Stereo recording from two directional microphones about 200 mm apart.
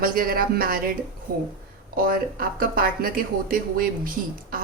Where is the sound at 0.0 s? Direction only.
45° right (ahead or behind).